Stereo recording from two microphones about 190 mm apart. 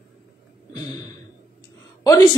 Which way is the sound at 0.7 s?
20° left (ahead or behind).